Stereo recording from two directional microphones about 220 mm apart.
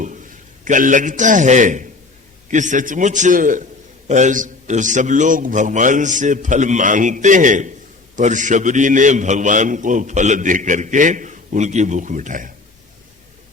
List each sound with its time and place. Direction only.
0.6 s a man's voice: 35° right (ahead or behind)